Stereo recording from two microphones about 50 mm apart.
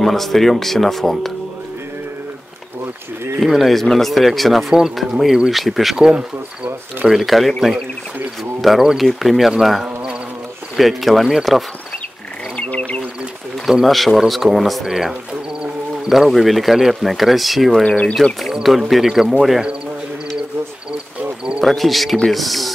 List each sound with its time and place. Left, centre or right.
0.0 s speech: centre
3.3 s speech: centre
6.0 s speech: centre
7.1 s speech: centre
12.5 s bird: left
13.7 s speech: centre
17.8 s speech: left
18.5 s speech: centre
21.6 s speech: centre